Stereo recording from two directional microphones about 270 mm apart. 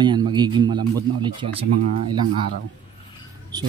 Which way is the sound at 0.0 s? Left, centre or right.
Centre.